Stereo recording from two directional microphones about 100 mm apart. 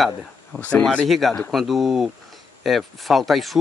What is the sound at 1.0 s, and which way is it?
Speech, centre (ahead or behind).